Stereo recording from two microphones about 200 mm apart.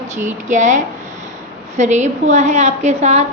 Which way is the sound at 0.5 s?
35° right (ahead or behind).